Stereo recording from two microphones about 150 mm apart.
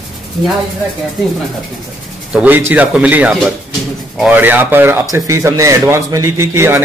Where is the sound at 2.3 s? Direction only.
10° right (ahead or behind).